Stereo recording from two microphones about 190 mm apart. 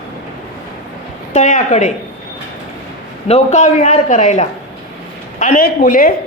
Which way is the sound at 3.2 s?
35° left (ahead or behind).